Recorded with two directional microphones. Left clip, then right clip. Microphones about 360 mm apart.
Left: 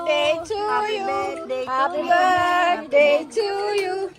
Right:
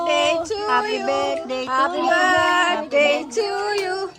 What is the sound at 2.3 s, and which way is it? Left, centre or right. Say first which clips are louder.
Child singing: right 1 dB; centre.